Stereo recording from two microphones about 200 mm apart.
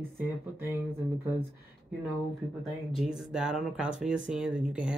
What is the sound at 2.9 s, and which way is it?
Speech, 5° right (ahead or behind).